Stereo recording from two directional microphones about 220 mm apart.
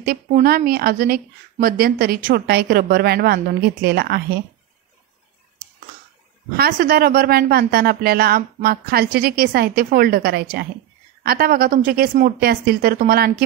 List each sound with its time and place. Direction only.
0.0 s speech: 40° right (ahead or behind)
6.5 s a woman's voice: 45° right (ahead or behind)